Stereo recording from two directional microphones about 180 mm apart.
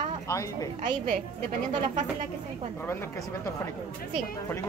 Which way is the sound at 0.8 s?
45° right (ahead or behind).